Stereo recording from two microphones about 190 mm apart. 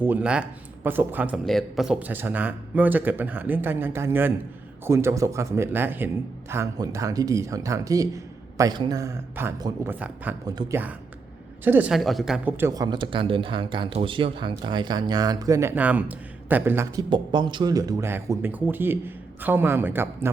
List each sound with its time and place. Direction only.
0.0 s speech: 5° right (ahead or behind)
10.5 s speech: 20° right (ahead or behind)
11.6 s speech: 10° right (ahead or behind)